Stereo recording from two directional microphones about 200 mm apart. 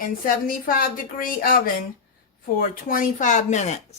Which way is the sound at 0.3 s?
45° left (ahead or behind).